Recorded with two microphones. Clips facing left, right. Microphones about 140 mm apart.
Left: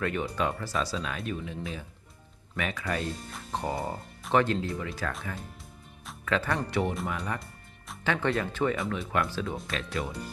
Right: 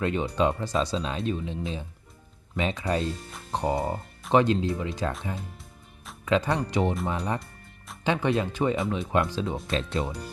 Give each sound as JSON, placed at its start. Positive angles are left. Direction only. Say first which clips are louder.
{"t": 0.0, "sound": "speech", "louder": "right 4 dB", "side_deg": -20}
{"t": 6.2, "sound": "speech", "louder": "right 4 dB", "side_deg": -20}